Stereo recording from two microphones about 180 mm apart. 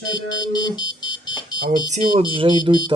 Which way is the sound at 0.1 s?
25° left (ahead or behind).